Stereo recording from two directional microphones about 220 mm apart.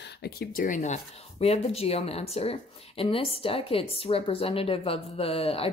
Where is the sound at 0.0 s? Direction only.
45° left (ahead or behind).